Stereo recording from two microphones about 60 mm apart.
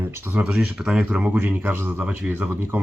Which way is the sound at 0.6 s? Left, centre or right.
Centre.